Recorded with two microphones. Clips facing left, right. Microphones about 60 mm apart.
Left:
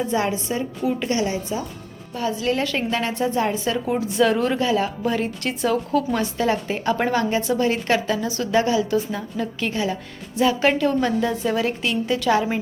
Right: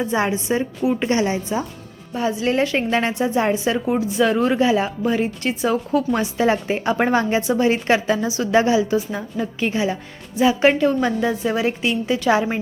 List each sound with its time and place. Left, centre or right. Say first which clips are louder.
0.0 s a woman's voice: right 2 dB; centre
3.2 s a woman's voice: right 2 dB; centre
4.5 s a woman's voice: right 3 dB; centre
5.0 s a woman's voice: right 3 dB; centre